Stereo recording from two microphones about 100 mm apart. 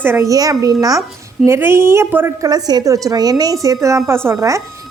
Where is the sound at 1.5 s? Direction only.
25° right (ahead or behind).